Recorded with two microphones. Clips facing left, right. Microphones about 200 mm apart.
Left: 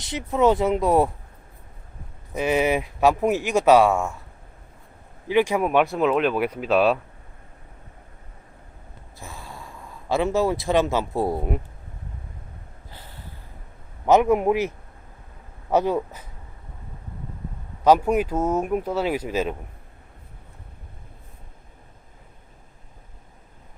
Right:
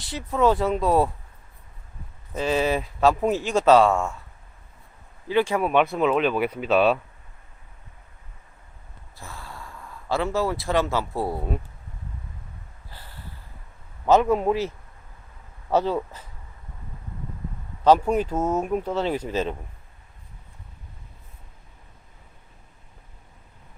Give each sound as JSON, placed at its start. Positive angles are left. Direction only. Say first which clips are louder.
{"t": 0.0, "sound": "speech", "louder": "left 2 dB", "side_deg": 20}
{"t": 2.3, "sound": "speech", "louder": "left 2 dB", "side_deg": 15}
{"t": 5.3, "sound": "speech", "louder": "left 1 dB", "side_deg": 15}
{"t": 5.8, "sound": "speech", "louder": "left 1 dB", "side_deg": 0}
{"t": 9.1, "sound": "speech", "louder": "left 1 dB", "side_deg": 15}
{"t": 12.9, "sound": "a sound", "louder": "left 1 dB", "side_deg": 20}
{"t": 14.0, "sound": "speech", "louder": "left 1 dB", "side_deg": 15}
{"t": 15.7, "sound": "speech", "louder": "left 2 dB", "side_deg": 15}
{"t": 17.8, "sound": "speech", "louder": "left 1 dB", "side_deg": 10}